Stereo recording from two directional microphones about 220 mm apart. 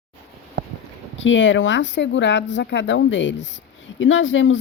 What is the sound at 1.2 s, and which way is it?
Speech, 60° left (ahead or behind).